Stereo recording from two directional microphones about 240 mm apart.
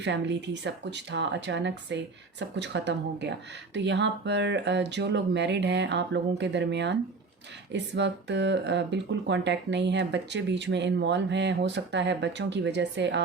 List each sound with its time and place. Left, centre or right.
0.0 s speech: right